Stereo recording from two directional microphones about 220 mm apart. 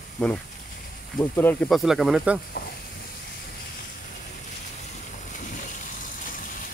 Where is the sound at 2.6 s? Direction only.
45° left (ahead or behind).